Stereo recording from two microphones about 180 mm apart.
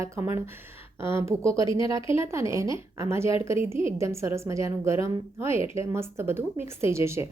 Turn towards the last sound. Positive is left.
turn(degrees=-15)  # may be behind; listen again after turning